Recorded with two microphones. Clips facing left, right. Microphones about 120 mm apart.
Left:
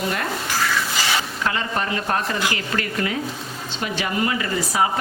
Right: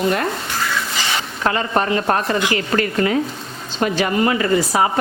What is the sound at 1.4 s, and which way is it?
A woman's voice, 40° right (ahead or behind).